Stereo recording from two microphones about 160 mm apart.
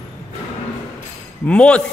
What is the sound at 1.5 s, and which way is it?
Speech, 5° left (ahead or behind).